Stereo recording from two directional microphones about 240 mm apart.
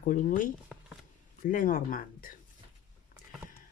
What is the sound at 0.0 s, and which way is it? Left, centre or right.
Speech, left.